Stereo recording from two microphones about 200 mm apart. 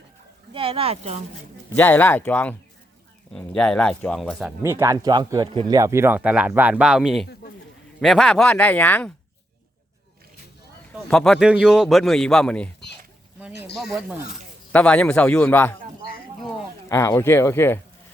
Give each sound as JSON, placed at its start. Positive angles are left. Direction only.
{"t": 0.5, "sound": "speech", "side_deg": -30}
{"t": 1.7, "sound": "speech", "side_deg": 10}
{"t": 4.6, "sound": "speech", "side_deg": -15}
{"t": 10.9, "sound": "speech", "side_deg": 0}
{"t": 13.7, "sound": "speech", "side_deg": 0}
{"t": 16.9, "sound": "speech", "side_deg": 15}